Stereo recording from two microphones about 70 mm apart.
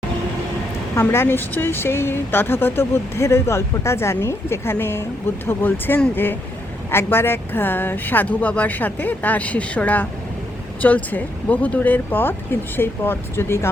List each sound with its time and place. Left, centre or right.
1.0 s speech: left